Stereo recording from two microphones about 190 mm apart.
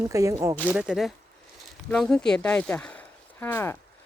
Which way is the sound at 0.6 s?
5° right (ahead or behind).